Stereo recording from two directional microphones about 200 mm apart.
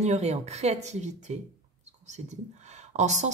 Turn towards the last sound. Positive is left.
turn(degrees=-35)  # may be behind; listen again after turning